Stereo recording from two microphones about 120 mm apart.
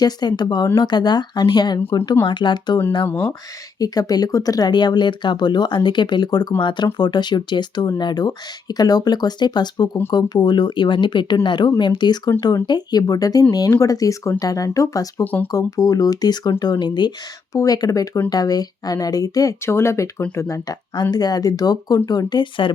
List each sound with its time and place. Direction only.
0.0 s speech: 35° left (ahead or behind)
3.1 s speech: 15° left (ahead or behind)
3.8 s speech: 30° left (ahead or behind)
15.2 s speech: 15° left (ahead or behind)
15.5 s speech: 30° left (ahead or behind)